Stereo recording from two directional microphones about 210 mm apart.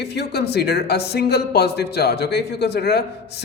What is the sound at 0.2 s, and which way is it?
Speech, 50° left (ahead or behind).